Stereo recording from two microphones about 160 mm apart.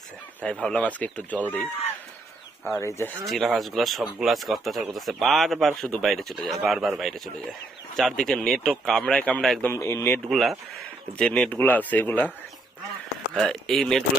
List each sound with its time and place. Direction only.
0.6 s speech: 5° left (ahead or behind)
2.7 s speech: 15° left (ahead or behind)
3.2 s speech: centre (ahead or behind)
9.7 s speech: 20° left (ahead or behind)
10.2 s speech: centre (ahead or behind)
13.3 s speech: centre (ahead or behind)